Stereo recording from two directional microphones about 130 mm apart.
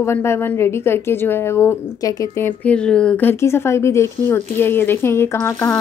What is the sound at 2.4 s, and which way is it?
A woman's voice, 10° left (ahead or behind).